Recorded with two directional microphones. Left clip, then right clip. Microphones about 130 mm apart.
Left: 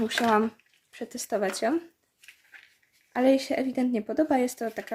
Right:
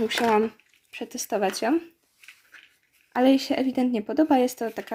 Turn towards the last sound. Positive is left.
turn(degrees=5)  # may be behind; listen again after turning